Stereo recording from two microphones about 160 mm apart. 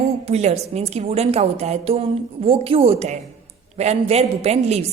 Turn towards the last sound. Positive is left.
turn(degrees=-40)  # may be behind; listen again after turning